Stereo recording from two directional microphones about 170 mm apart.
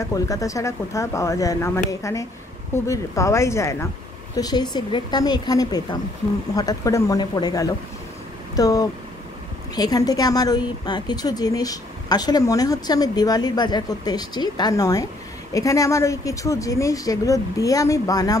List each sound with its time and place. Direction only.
0.0 s speech: 20° left (ahead or behind)